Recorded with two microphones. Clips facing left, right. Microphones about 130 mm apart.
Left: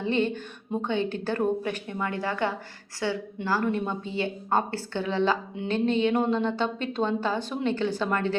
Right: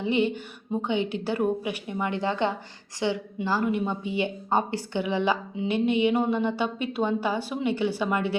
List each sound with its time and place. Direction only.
0.0 s a woman's voice: 15° right (ahead or behind)